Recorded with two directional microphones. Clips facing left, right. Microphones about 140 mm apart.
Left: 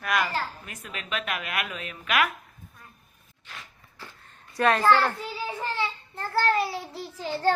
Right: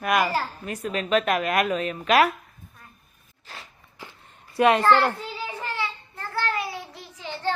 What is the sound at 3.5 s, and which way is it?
Walk, 35° right (ahead or behind).